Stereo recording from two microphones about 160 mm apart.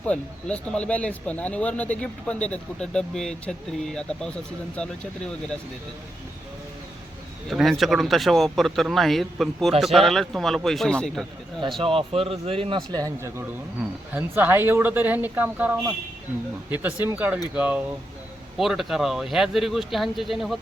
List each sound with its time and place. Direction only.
0.1 s speech: 5° left (ahead or behind)
7.5 s speech: centre (ahead or behind)
11.8 s speech: 35° right (ahead or behind); by 20.6 s centre (ahead or behind)